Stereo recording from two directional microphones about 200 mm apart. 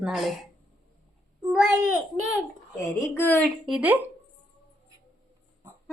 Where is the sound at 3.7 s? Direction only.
10° right (ahead or behind).